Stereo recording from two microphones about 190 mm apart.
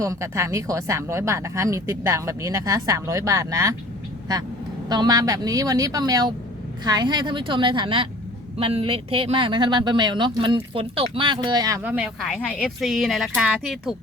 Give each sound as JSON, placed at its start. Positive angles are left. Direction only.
{"t": 0.0, "sound": "speech", "side_deg": -15}
{"t": 4.9, "sound": "speech", "side_deg": -20}
{"t": 11.8, "sound": "speech", "side_deg": -5}